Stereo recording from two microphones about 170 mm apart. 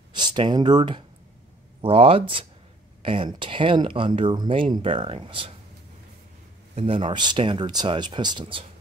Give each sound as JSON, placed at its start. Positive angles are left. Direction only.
{"t": 0.1, "sound": "speech", "side_deg": -25}
{"t": 6.7, "sound": "speech", "side_deg": -35}